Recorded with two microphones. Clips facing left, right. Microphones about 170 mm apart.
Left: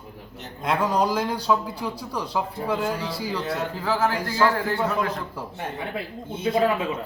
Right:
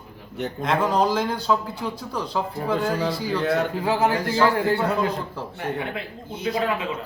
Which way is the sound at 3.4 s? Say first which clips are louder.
Right 8 dB; 70° right (ahead or behind).